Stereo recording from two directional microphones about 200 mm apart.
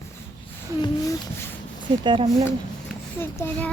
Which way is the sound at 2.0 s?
25° right (ahead or behind).